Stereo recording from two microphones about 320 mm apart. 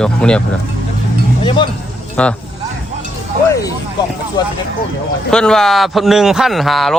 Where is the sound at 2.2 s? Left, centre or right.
Centre.